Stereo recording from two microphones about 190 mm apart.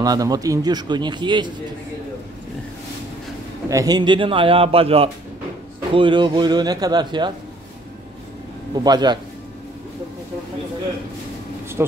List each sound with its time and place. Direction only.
0.0 s a man's voice: 20° right (ahead or behind)
3.7 s a man's voice: 20° right (ahead or behind)
8.8 s a man's voice: 20° right (ahead or behind)